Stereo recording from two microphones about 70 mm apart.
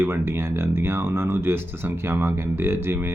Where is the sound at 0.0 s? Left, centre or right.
Right.